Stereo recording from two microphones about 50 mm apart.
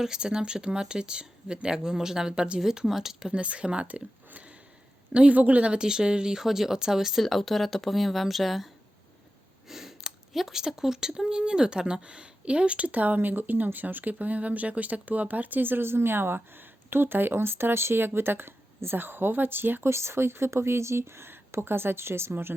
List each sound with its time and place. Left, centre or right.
0.0 s speech: centre
4.3 s sniff: right
5.1 s speech: right; by 7.2 s centre
7.2 s speech: centre; by 19.9 s right
19.9 s speech: right